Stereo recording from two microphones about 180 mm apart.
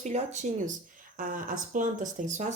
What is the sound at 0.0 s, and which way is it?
Speech, 40° right (ahead or behind).